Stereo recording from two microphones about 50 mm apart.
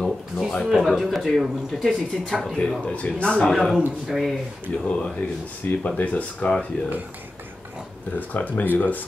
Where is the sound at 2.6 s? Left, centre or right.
Left.